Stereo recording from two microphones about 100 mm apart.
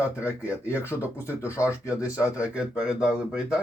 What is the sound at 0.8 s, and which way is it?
Speech, 25° left (ahead or behind).